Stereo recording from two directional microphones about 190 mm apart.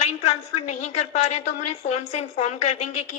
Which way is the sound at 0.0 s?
35° left (ahead or behind).